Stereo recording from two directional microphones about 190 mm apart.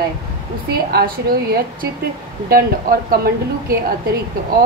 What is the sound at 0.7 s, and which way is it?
A woman's voice, 55° right (ahead or behind).